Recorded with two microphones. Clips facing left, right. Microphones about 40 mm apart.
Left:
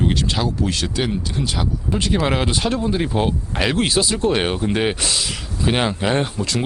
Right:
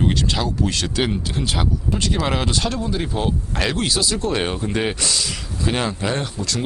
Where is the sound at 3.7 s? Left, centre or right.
Left.